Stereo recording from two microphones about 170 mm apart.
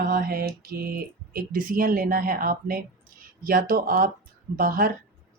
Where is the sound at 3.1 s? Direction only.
60° right (ahead or behind).